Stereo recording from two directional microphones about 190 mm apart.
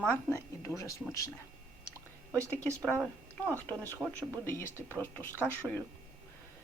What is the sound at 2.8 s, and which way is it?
A woman's voice, 5° left (ahead or behind).